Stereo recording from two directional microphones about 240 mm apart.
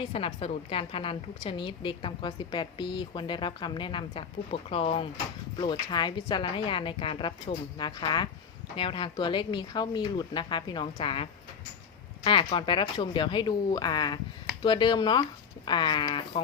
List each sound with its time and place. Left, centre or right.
0.0 s a woman's voice: left